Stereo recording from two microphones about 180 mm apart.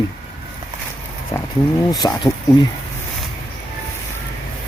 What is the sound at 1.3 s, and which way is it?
Speech, 20° left (ahead or behind).